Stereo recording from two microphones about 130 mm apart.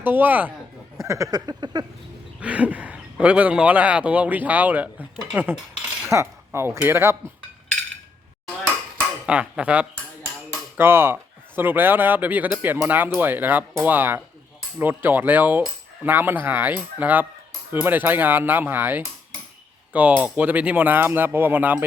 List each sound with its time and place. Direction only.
0.0 s speech: 15° right (ahead or behind)
1.0 s a sound: 25° right (ahead or behind)
2.4 s speech: 10° right (ahead or behind)
6.1 s speech: 20° right (ahead or behind)
9.2 s speech: 10° right (ahead or behind)